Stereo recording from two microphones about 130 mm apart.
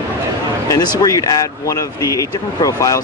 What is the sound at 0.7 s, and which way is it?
Speech, 25° left (ahead or behind).